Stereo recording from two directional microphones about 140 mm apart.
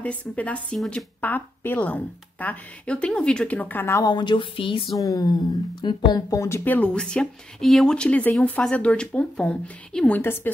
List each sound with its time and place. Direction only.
0.0 s speech: 10° left (ahead or behind)
4.1 s speech: 35° left (ahead or behind)
4.9 s speech: 25° left (ahead or behind)